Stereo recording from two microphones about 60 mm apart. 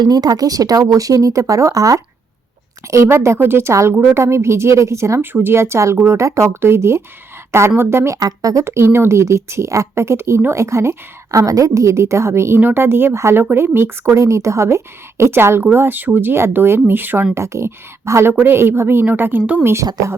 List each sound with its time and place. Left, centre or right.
0.1 s speech: right
2.9 s speech: right
5.2 s speech: right
8.2 s speech: right
8.6 s speech: right
12.5 s a woman's voice: right
14.2 s a woman's voice: right
17.3 s a woman's voice: right